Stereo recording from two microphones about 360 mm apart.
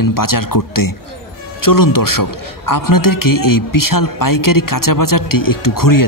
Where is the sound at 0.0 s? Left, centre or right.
Left.